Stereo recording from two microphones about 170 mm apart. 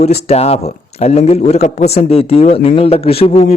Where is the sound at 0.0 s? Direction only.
40° left (ahead or behind).